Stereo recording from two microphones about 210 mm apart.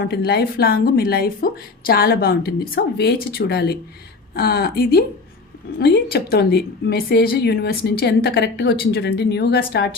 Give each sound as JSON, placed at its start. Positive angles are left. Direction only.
{"t": 0.0, "sound": "a woman's voice", "side_deg": 50}